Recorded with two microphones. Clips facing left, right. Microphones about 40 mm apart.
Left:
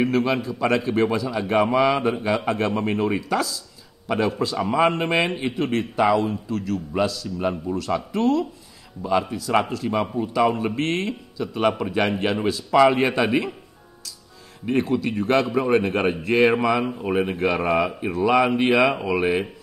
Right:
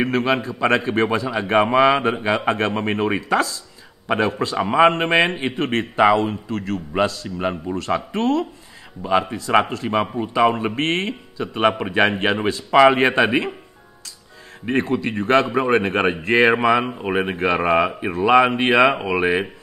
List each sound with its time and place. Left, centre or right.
0.0 s a man's voice: right
14.7 s a man's voice: right